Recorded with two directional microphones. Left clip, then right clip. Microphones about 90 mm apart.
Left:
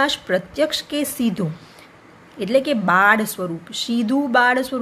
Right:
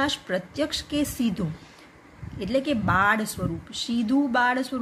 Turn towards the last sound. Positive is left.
turn(degrees=25)  # may be behind; listen again after turning